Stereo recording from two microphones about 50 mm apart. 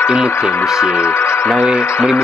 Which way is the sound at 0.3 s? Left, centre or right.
Left.